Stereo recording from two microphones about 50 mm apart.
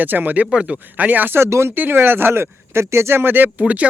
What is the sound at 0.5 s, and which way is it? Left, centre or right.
Speech, right.